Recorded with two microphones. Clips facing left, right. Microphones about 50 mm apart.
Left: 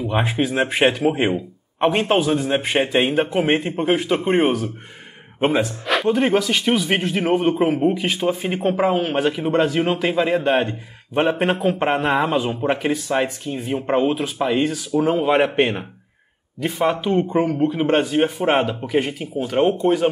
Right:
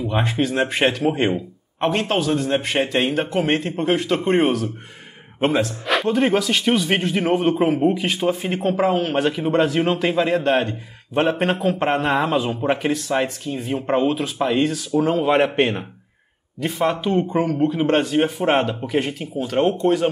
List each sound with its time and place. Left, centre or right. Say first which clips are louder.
0.0 s speech: left 1 dB; centre
11.5 s speech: left 1 dB; centre
11.8 s speech: even; centre